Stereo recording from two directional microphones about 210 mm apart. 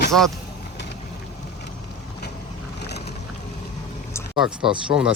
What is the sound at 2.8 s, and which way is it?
Boat, 50° left (ahead or behind).